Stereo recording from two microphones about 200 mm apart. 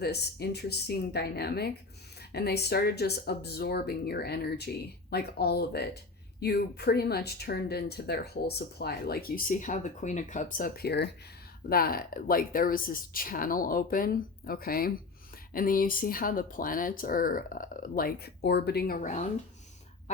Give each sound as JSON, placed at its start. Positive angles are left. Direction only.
{"t": 0.0, "sound": "speech", "side_deg": 55}